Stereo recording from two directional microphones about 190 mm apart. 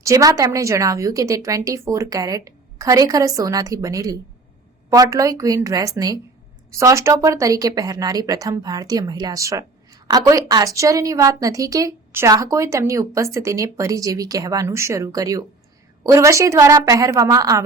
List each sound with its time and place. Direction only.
0.0 s speech: 15° right (ahead or behind)